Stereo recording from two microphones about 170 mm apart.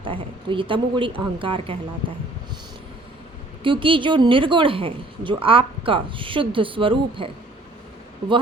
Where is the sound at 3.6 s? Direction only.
30° right (ahead or behind).